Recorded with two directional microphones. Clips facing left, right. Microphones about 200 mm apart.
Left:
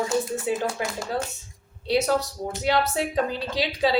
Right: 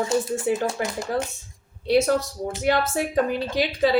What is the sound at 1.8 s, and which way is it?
A woman's voice, 50° right (ahead or behind).